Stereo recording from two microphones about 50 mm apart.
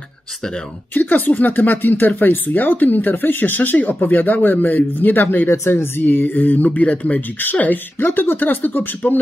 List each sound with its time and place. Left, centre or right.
0.9 s speech: left
5.7 s speech: left